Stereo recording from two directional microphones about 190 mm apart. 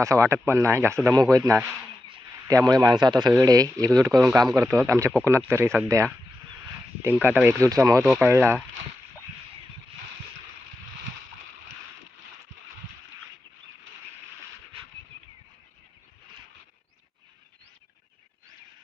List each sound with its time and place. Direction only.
0.0 s speech: 15° right (ahead or behind)
2.0 s a sound: 20° right (ahead or behind)
3.2 s speech: 20° right (ahead or behind)